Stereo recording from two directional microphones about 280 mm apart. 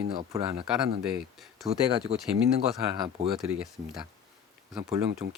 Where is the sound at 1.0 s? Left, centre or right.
Centre.